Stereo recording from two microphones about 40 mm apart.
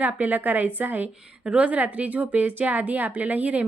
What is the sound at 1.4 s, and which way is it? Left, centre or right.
A woman's voice, right.